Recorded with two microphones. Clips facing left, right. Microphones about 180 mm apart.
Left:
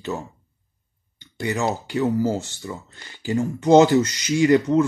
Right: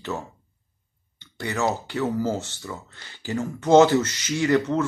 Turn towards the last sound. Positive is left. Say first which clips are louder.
# left 5 dB
turn(degrees=15)  # may be behind; listen again after turning